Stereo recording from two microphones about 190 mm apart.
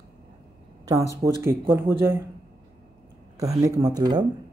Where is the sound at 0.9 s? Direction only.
15° right (ahead or behind).